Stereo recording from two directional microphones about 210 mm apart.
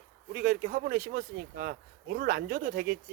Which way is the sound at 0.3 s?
45° right (ahead or behind).